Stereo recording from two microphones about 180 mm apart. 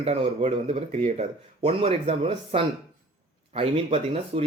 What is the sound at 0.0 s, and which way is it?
Speech, 35° right (ahead or behind).